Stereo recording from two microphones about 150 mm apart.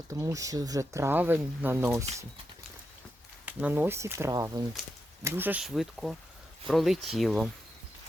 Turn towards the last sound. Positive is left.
turn(degrees=0)  # may be behind; listen again after turning